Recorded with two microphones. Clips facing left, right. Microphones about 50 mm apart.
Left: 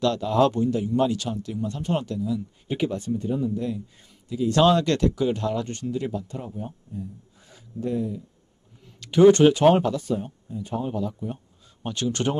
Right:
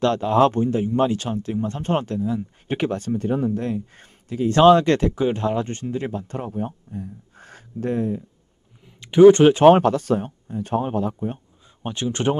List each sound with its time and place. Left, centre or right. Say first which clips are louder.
0.0 s a man's voice: right 3 dB; right
4.5 s a man's voice: right 6 dB; right
6.3 s speech: right 6 dB; right
8.8 s speech: right 4 dB; centre
9.7 s speech: right 5 dB; right
11.8 s speech: right 2 dB; right